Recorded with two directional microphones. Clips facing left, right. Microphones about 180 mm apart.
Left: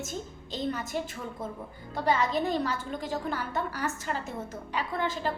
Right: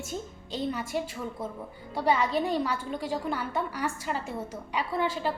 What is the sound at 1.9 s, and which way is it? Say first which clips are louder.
A woman's voice: right 1 dB; 10° right (ahead or behind).